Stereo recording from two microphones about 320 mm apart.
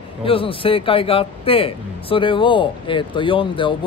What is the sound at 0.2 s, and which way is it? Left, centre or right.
Speech, centre.